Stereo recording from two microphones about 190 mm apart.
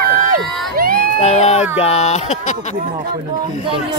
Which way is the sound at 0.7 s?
50° right (ahead or behind).